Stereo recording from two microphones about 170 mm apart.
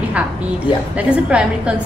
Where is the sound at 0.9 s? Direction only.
5° right (ahead or behind).